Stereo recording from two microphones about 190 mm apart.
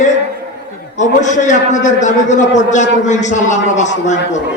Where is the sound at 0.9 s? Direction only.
40° left (ahead or behind).